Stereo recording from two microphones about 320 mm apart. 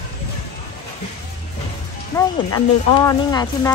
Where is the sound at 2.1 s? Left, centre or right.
Centre.